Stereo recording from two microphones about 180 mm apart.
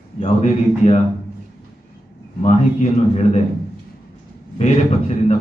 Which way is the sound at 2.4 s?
40° left (ahead or behind).